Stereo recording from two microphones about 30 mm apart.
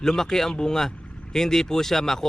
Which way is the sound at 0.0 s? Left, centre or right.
Centre.